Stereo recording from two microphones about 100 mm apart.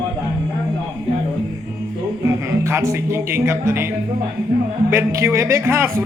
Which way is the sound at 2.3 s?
30° right (ahead or behind).